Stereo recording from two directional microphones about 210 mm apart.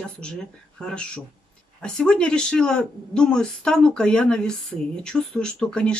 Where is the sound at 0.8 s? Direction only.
5° left (ahead or behind).